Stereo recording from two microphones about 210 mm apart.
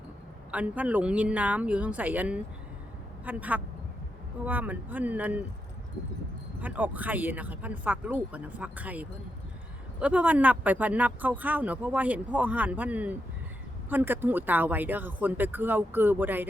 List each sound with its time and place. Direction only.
0.5 s speech: 5° right (ahead or behind)
6.6 s speech: 10° right (ahead or behind)